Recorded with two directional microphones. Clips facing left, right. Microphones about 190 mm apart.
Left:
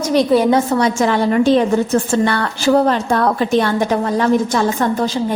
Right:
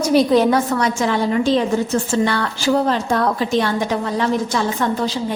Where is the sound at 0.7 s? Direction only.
35° left (ahead or behind).